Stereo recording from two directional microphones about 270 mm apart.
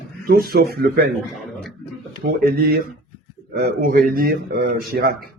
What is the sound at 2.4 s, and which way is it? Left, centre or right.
Speech, right.